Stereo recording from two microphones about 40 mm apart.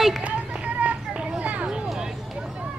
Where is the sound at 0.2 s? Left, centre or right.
Right.